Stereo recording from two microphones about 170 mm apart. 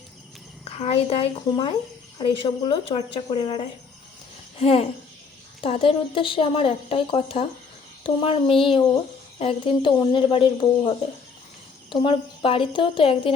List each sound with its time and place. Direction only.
0.6 s a child's voice: 35° left (ahead or behind)